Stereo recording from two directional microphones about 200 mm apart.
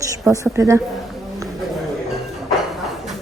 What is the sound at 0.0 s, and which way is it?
Speech, 15° right (ahead or behind).